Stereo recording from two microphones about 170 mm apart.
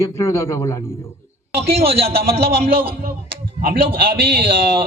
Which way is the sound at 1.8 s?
35° right (ahead or behind).